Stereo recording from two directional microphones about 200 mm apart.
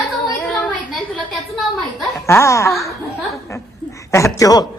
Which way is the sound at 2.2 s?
15° left (ahead or behind).